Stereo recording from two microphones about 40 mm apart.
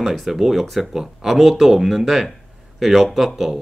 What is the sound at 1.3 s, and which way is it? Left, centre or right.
Speech, centre.